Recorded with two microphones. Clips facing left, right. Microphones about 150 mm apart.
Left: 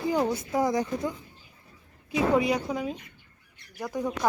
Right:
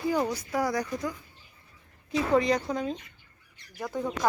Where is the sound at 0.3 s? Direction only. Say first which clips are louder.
Left 3 dB; 25° left (ahead or behind).